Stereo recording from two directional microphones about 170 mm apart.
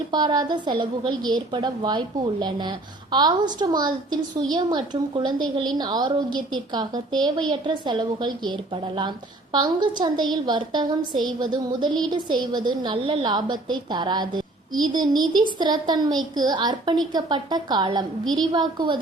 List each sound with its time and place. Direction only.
0.1 s a woman's voice: 25° right (ahead or behind)